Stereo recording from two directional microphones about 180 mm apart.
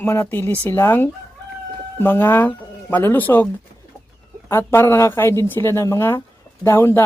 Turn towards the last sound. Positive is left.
turn(degrees=15)  # may be behind; listen again after turning